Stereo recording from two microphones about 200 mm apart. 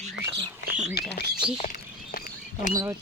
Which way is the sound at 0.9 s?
55° left (ahead or behind).